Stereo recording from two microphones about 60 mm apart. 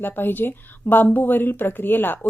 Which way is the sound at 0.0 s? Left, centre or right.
Left.